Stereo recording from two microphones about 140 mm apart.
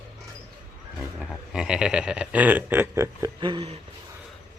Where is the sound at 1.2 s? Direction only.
5° right (ahead or behind).